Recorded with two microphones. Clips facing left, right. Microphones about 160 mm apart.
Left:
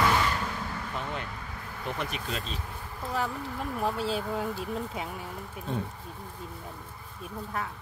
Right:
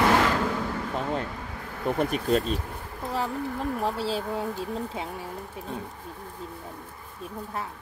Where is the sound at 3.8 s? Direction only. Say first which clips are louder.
Left 2 dB; 30° right (ahead or behind).